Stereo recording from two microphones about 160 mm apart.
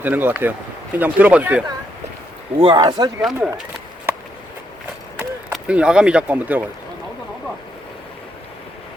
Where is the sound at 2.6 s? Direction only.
30° right (ahead or behind).